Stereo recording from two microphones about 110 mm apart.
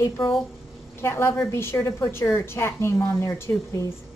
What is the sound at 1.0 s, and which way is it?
A woman's voice, 20° left (ahead or behind).